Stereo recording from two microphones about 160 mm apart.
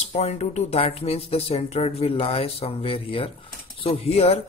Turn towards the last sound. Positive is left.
turn(degrees=40)  # may be behind; listen again after turning